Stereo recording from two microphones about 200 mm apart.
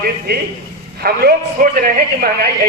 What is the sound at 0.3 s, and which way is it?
A man's voice, 50° right (ahead or behind).